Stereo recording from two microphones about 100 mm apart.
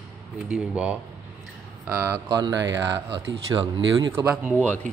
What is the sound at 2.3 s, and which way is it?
Speech, 40° right (ahead or behind).